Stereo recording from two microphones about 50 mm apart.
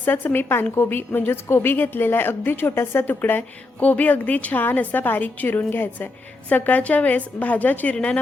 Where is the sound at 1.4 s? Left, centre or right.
Left.